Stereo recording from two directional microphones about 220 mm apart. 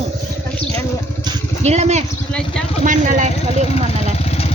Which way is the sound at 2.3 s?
5° left (ahead or behind).